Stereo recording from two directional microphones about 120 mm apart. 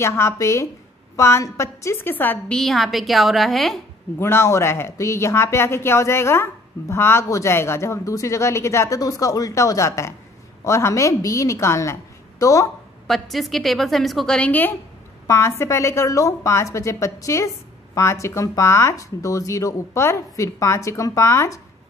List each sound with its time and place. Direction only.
0.0 s a woman's voice: 25° left (ahead or behind); by 3.8 s centre (ahead or behind)
4.2 s a woman's voice: 20° left (ahead or behind)
13.0 s a woman's voice: centre (ahead or behind); by 21.5 s 25° left (ahead or behind)